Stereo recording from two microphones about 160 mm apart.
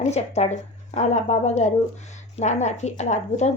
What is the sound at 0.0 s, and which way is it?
A woman's voice, 45° left (ahead or behind).